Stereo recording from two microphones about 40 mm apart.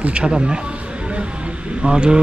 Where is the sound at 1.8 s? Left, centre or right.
Right.